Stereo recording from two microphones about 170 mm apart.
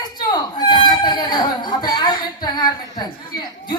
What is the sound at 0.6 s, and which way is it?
Chicken, 25° left (ahead or behind).